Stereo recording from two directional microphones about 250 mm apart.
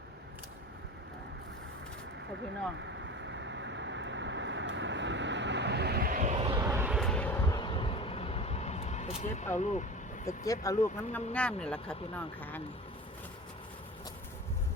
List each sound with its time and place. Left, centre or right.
2.7 s vehicle: right
6.6 s vehicle: centre; by 9.5 s left
9.6 s speech: left
10.2 s speech: centre